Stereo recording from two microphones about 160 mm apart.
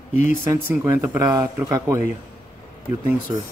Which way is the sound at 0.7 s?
20° right (ahead or behind).